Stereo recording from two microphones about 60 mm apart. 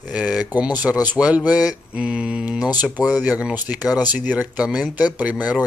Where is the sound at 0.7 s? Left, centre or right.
Right.